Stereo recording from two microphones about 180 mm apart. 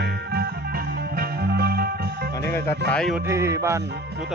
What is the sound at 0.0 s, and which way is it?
Music, 65° right (ahead or behind).